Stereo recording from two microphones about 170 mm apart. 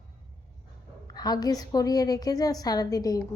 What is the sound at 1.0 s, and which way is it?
A woman's voice, 25° left (ahead or behind).